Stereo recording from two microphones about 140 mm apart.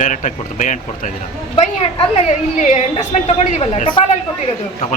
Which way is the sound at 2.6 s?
55° left (ahead or behind).